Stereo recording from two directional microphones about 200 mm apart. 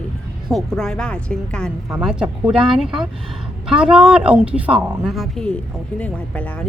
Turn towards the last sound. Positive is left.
turn(degrees=5)  # may be behind; listen again after turning